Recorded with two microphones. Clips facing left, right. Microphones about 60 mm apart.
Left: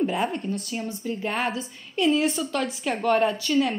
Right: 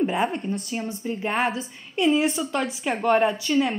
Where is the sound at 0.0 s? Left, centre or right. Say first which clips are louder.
Right 1 dB; centre.